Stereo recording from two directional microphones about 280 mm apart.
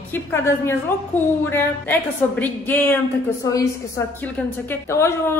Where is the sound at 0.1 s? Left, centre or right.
Centre.